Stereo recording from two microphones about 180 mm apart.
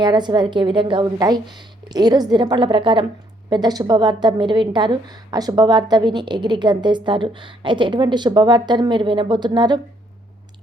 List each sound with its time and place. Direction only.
0.0 s a woman's voice: 25° right (ahead or behind)